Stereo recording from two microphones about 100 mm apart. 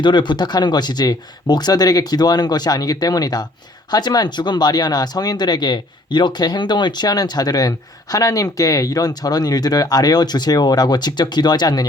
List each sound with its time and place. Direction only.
0.0 s speech: 50° left (ahead or behind)